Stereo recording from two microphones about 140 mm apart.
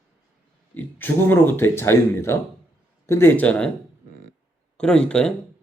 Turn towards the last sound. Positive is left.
turn(degrees=5)  # may be behind; listen again after turning